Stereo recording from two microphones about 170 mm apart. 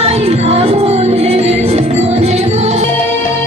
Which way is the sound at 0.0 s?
35° right (ahead or behind).